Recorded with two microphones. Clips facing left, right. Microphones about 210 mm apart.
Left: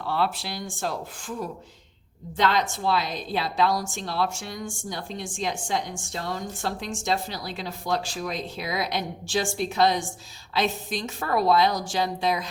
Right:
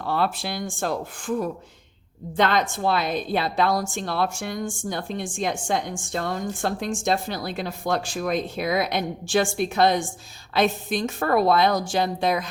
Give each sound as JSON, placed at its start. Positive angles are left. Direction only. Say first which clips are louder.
{"t": 0.0, "sound": "speech", "louder": "right 2 dB", "side_deg": -50}
{"t": 2.3, "sound": "a woman's voice", "louder": "right 2 dB", "side_deg": -55}